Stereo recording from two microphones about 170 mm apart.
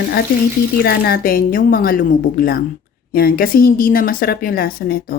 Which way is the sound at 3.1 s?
60° left (ahead or behind).